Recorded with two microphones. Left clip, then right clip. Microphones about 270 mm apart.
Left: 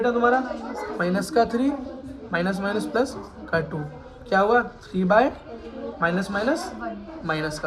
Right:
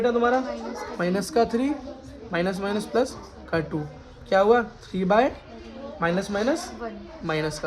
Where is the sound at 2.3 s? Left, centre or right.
Right.